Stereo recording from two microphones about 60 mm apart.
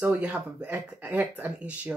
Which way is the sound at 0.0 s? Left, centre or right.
Right.